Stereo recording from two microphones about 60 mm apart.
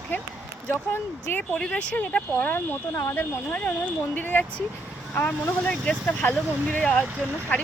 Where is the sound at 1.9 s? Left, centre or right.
Left.